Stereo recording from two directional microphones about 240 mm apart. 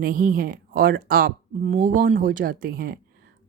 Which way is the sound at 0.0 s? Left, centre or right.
Right.